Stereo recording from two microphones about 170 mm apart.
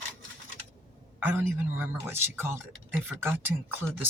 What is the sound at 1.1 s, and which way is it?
A man's voice, 10° right (ahead or behind).